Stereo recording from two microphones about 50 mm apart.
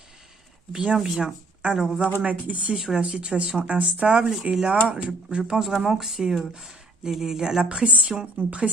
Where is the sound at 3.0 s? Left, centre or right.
Centre.